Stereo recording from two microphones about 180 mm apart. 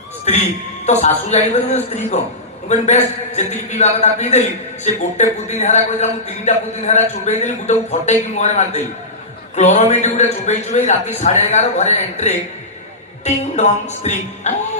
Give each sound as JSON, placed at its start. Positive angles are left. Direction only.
{"t": 0.3, "sound": "a man's voice", "side_deg": 40}